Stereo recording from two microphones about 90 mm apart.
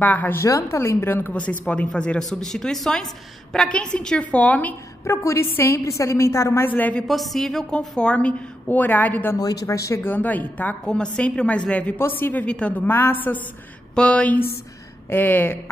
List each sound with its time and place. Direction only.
0.0 s a woman's voice: 20° left (ahead or behind)
5.0 s a woman's voice: 35° left (ahead or behind)
6.6 s a woman's voice: 20° left (ahead or behind)
7.1 s a woman's voice: centre (ahead or behind); by 9.4 s 20° left (ahead or behind)
9.4 s a woman's voice: 40° left (ahead or behind)
10.0 s a woman's voice: 20° left (ahead or behind)